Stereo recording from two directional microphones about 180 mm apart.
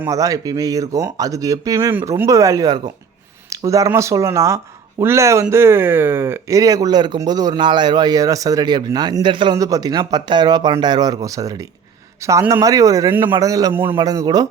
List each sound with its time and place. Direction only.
0.0 s speech: 20° right (ahead or behind)